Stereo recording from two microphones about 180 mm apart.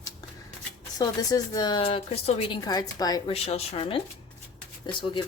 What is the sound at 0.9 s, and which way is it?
Speech, 20° left (ahead or behind).